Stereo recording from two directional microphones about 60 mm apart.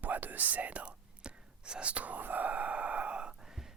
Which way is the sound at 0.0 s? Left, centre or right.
Right.